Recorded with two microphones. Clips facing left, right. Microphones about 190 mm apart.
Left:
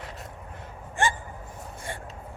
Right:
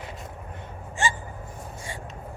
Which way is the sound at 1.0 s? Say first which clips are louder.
Left 1 dB; 55° left (ahead or behind).